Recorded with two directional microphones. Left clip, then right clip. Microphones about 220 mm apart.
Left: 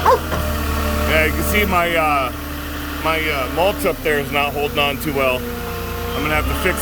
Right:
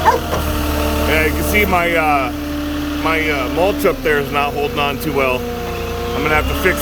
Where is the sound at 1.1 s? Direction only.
5° right (ahead or behind).